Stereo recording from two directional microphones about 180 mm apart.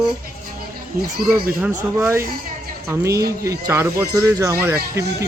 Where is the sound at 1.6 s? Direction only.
15° right (ahead or behind).